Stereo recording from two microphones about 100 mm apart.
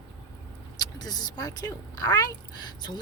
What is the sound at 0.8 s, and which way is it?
Speech, 40° left (ahead or behind).